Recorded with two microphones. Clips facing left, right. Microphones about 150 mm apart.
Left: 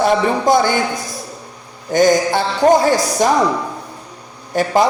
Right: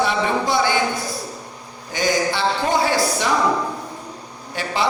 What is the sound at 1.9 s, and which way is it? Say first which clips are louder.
Speech: left 8 dB; 45° left (ahead or behind).